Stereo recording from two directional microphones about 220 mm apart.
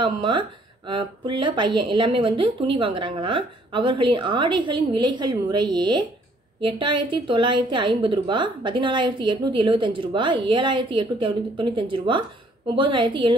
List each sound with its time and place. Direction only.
0.0 s a woman's voice: 20° right (ahead or behind)